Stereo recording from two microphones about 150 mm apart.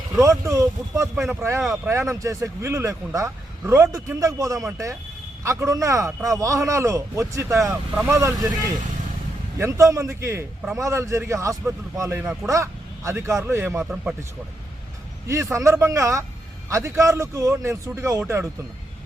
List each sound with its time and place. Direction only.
0.2 s speech: 20° right (ahead or behind)
1.6 s speech: centre (ahead or behind)
1.9 s speech: 20° right (ahead or behind)
12.2 s speech: 5° right (ahead or behind)
13.1 s a man's voice: 20° right (ahead or behind)
13.9 s a man's voice: 5° right (ahead or behind)
15.3 s speech: 20° right (ahead or behind)